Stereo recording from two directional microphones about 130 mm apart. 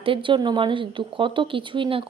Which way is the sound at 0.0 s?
40° right (ahead or behind).